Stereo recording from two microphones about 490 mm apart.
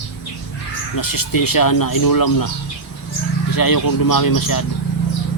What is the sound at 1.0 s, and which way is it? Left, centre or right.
Speech, left.